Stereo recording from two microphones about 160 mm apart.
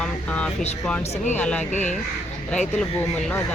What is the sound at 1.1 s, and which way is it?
Speech, 45° left (ahead or behind).